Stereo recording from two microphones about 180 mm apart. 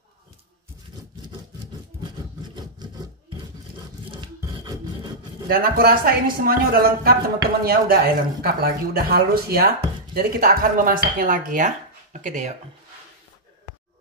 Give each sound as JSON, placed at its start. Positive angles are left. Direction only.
{"t": 4.1, "sound": "music", "side_deg": -25}
{"t": 5.5, "sound": "speech", "side_deg": -55}